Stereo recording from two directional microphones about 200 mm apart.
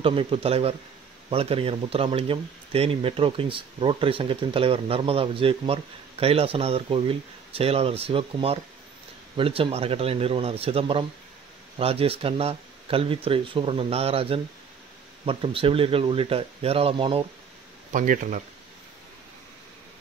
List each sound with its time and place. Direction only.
0.0 s speech: 25° right (ahead or behind)
17.9 s speech: 40° right (ahead or behind)